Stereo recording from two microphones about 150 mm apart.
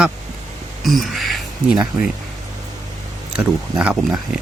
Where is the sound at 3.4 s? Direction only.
10° right (ahead or behind).